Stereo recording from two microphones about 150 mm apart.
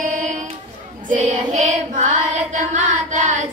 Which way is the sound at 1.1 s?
50° right (ahead or behind).